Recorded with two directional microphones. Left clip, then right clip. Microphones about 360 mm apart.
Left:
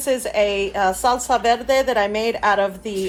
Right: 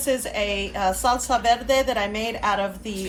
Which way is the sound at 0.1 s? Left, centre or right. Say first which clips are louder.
Left 5 dB; centre.